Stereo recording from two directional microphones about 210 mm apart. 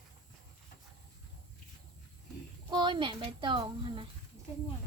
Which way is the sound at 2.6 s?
20° right (ahead or behind).